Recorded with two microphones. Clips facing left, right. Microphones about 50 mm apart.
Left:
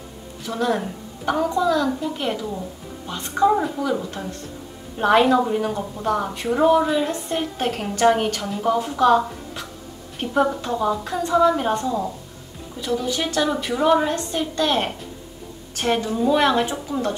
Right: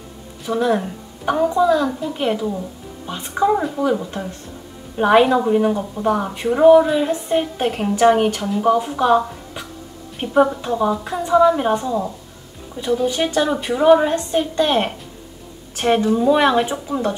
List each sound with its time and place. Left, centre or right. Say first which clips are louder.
0.5 s a woman's voice: right 4 dB; centre
1.9 s a woman's voice: even; centre
2.1 s a woman's voice: right 5 dB; centre
13.0 s a woman's voice: right 4 dB; right